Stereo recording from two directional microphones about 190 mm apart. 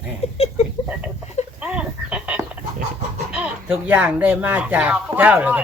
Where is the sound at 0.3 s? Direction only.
30° left (ahead or behind).